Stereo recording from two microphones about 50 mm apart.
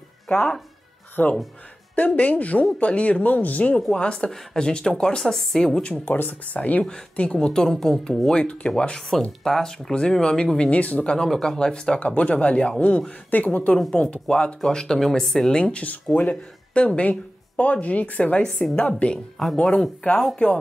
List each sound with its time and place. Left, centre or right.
0.3 s speech: left
3.9 s speech: centre
5.0 s speech: centre
6.0 s speech: left
6.9 s speech: centre
10.8 s speech: left
11.2 s speech: centre
14.7 s speech: centre
15.5 s speech: centre
19.3 s speech: centre; by 20.5 s left